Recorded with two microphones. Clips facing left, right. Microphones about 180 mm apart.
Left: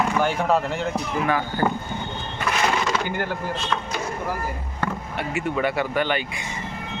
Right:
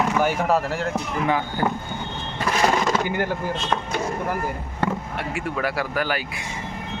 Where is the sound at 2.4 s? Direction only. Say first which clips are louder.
Right 3 dB; 35° right (ahead or behind).